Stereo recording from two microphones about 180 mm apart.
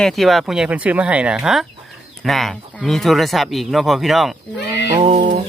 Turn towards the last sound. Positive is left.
turn(degrees=-35)  # may be behind; listen again after turning